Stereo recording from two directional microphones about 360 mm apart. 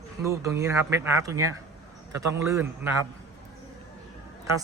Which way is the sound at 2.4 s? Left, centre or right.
Centre.